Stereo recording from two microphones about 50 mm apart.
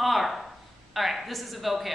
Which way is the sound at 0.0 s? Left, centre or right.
Centre.